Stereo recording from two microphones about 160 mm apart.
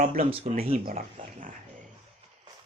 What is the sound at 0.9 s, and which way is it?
Speech, 60° right (ahead or behind).